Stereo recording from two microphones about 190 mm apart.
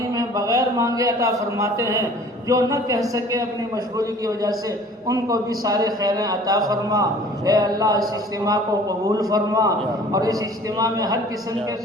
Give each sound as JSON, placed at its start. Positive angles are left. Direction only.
{"t": 0.2, "sound": "a man's voice", "side_deg": -15}